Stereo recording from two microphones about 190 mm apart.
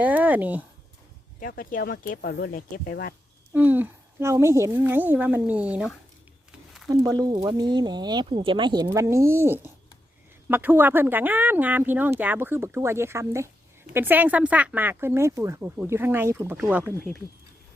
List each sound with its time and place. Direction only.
0.0 s speech: 10° right (ahead or behind)
1.4 s speech: 45° left (ahead or behind)
3.5 s speech: 10° right (ahead or behind)
6.8 s speech: 15° right (ahead or behind)